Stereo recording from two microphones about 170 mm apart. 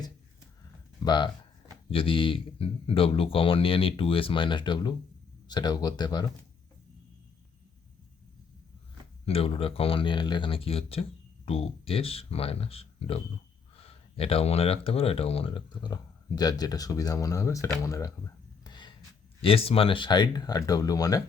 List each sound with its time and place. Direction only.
1.0 s speech: 25° left (ahead or behind)
9.2 s speech: 35° left (ahead or behind); by 18.1 s 20° left (ahead or behind)
18.6 s a sound: 25° left (ahead or behind)
19.4 s speech: 35° left (ahead or behind)